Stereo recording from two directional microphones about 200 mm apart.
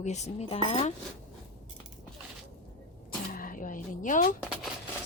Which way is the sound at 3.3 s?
45° left (ahead or behind).